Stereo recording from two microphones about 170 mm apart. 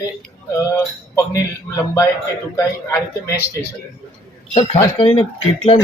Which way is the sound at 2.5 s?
15° left (ahead or behind).